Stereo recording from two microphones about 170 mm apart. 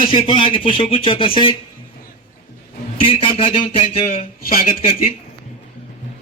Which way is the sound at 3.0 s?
30° left (ahead or behind).